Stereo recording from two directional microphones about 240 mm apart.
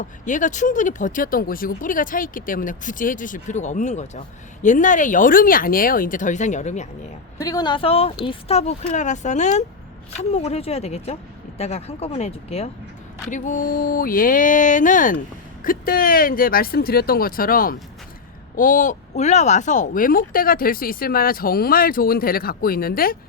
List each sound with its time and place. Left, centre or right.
0.0 s a woman's voice: left
7.3 s a woman's voice: centre; by 23.1 s left